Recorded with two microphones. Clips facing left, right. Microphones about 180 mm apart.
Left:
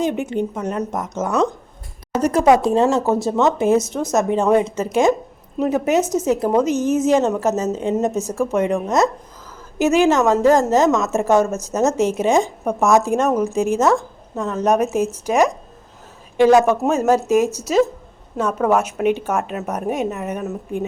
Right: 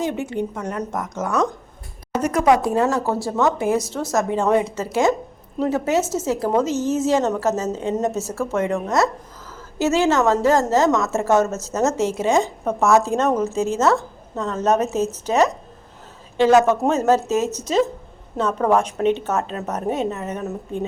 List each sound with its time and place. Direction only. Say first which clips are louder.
0.0 s a woman's voice: left 3 dB; 20° left (ahead or behind)
20.4 s a woman's voice: left 2 dB; centre (ahead or behind)